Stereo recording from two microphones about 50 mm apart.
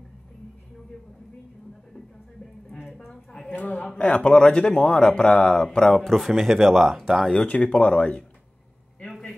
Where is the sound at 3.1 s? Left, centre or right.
Centre.